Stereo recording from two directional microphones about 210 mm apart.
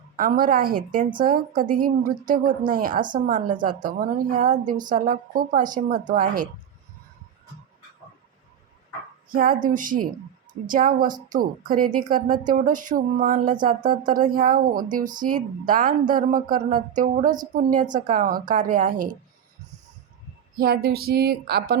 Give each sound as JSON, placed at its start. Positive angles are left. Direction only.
{"t": 0.2, "sound": "a woman's voice", "side_deg": -40}
{"t": 9.3, "sound": "a woman's voice", "side_deg": -40}
{"t": 20.6, "sound": "a woman's voice", "side_deg": -45}